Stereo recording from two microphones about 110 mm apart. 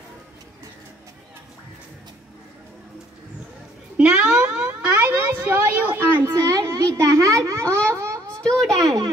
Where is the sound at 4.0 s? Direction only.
10° right (ahead or behind).